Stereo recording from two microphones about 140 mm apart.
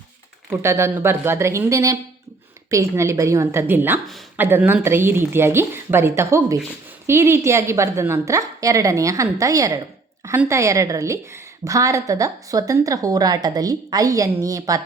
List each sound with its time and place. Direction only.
0.5 s a woman's voice: 15° right (ahead or behind)